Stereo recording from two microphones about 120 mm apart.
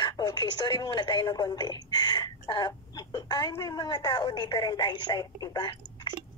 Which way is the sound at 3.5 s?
35° left (ahead or behind).